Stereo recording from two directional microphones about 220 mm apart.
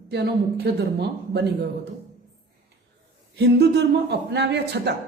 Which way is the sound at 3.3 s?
50° right (ahead or behind).